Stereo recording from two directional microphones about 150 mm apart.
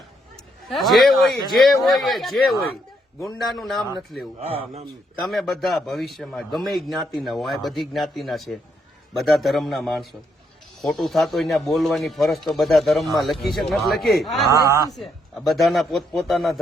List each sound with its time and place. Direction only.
0.7 s speech: centre (ahead or behind)
4.4 s speech: 40° right (ahead or behind)
5.2 s speech: centre (ahead or behind)
14.5 s a man's voice: 20° right (ahead or behind)
14.9 s speech: centre (ahead or behind)